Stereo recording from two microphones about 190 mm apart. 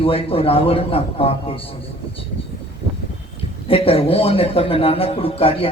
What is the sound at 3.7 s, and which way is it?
Speech, 30° left (ahead or behind).